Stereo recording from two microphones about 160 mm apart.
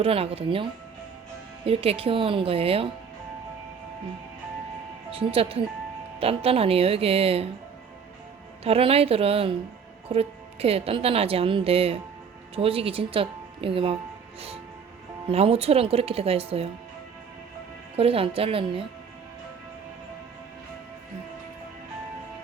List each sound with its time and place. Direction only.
0.0 s a woman's voice: 35° right (ahead or behind)
5.1 s a woman's voice: 35° right (ahead or behind)
8.6 s a woman's voice: 40° right (ahead or behind)
15.3 s a woman's voice: 40° right (ahead or behind)
17.9 s a woman's voice: 35° right (ahead or behind)